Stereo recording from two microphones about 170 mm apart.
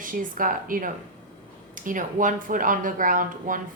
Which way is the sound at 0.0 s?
55° right (ahead or behind).